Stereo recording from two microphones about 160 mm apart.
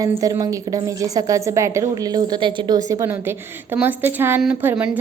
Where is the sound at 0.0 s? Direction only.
20° right (ahead or behind).